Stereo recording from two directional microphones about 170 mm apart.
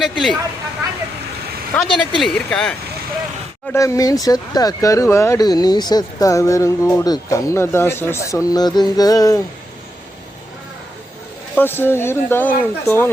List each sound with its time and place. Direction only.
0.0 s speech: centre (ahead or behind)
1.7 s speech: 5° left (ahead or behind)
3.7 s speech: 20° left (ahead or behind)
11.5 s speech: 10° left (ahead or behind)